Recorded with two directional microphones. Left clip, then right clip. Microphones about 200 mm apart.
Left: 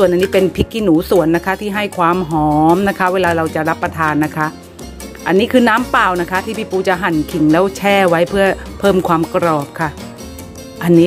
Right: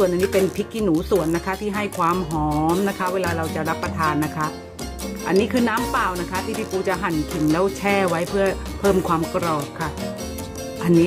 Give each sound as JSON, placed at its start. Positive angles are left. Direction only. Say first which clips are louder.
{"t": 0.0, "sound": "speech", "louder": "left 7 dB", "side_deg": 40}